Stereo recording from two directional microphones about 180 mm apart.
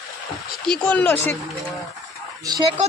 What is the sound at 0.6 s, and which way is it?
Speech, 5° left (ahead or behind).